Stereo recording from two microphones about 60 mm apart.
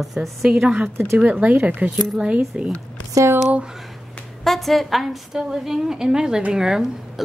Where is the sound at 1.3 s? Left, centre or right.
Right.